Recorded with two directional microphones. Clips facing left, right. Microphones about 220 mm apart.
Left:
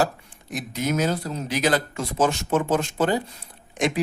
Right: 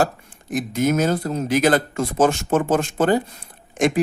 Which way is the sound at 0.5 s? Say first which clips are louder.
Right 6 dB; 50° right (ahead or behind).